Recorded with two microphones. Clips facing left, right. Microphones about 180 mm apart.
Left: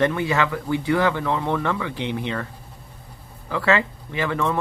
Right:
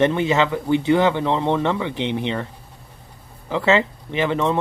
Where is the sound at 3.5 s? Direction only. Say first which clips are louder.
Right 3 dB; 20° right (ahead or behind).